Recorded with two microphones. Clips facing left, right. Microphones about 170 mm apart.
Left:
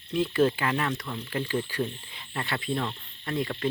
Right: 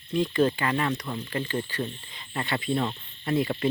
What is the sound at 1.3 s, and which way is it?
Speech, 5° left (ahead or behind).